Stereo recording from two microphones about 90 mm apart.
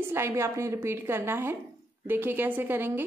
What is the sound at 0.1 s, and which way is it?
A woman's voice, 30° right (ahead or behind).